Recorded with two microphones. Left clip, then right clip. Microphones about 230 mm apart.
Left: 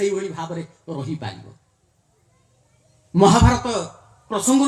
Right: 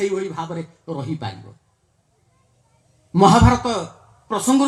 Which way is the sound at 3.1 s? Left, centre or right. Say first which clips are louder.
Right 2 dB; right.